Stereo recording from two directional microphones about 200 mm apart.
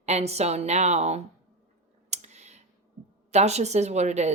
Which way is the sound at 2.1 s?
35° right (ahead or behind).